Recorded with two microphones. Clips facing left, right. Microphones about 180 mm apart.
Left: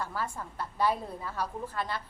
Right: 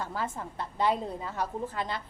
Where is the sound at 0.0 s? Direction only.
20° right (ahead or behind).